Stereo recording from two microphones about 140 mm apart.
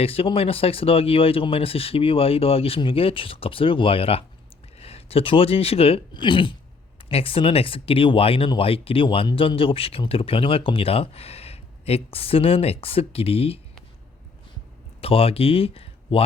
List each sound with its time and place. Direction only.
0.0 s speech: 45° left (ahead or behind)
15.0 s speech: 45° left (ahead or behind)